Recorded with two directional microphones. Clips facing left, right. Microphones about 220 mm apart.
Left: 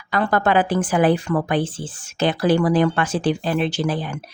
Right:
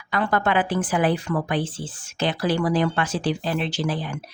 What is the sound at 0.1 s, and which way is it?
A woman's voice, 40° left (ahead or behind).